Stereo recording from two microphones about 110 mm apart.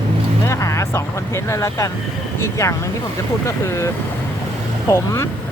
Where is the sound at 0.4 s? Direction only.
25° left (ahead or behind).